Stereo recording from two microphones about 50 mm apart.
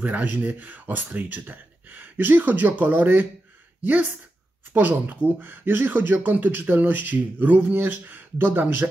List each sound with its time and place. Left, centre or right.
0.0 s speech: right